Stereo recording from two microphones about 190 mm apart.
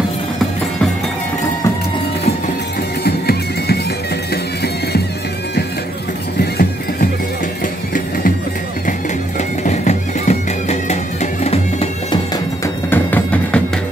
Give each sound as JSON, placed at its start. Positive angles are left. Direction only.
{"t": 3.0, "sound": "music", "side_deg": 60}
{"t": 6.4, "sound": "horse", "side_deg": 55}
{"t": 9.6, "sound": "music", "side_deg": 35}
{"t": 11.4, "sound": "bagpipes", "side_deg": 30}
{"t": 12.6, "sound": "music", "side_deg": 10}